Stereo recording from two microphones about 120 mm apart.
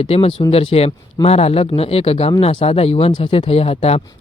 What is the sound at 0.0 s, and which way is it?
Speech, 55° left (ahead or behind).